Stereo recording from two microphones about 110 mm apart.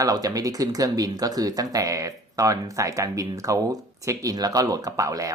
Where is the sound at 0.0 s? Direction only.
35° right (ahead or behind).